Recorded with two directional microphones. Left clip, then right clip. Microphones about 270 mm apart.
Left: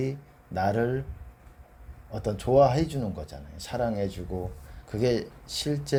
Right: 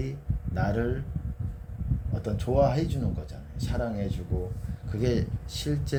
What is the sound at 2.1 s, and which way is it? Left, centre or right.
Speech, left.